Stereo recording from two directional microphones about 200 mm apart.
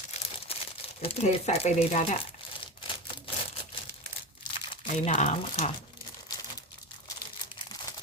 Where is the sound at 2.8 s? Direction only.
25° left (ahead or behind).